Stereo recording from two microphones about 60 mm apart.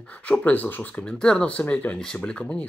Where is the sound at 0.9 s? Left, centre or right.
Centre.